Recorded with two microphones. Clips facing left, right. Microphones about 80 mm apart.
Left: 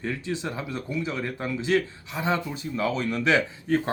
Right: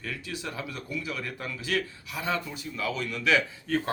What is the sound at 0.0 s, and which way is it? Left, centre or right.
Speech, left.